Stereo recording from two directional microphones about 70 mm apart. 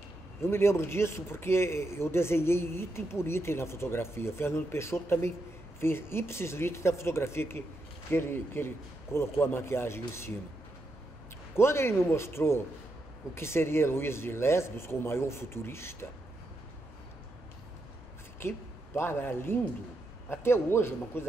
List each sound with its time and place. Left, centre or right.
0.4 s a man's voice: left
11.5 s a man's voice: left
18.4 s a man's voice: left